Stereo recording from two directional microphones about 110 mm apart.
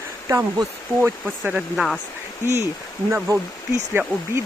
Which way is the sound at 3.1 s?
25° right (ahead or behind).